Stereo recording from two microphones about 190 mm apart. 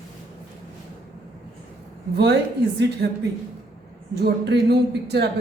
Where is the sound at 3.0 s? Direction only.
60° right (ahead or behind).